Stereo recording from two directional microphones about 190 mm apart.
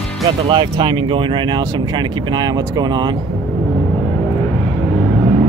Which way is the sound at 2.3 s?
20° right (ahead or behind).